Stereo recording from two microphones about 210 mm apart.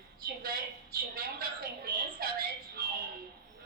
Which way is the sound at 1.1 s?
45° right (ahead or behind).